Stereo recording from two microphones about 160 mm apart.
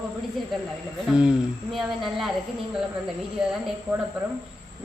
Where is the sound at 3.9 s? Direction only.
10° right (ahead or behind).